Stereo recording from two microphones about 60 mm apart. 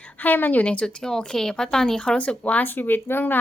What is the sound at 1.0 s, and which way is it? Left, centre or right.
A woman's voice, centre.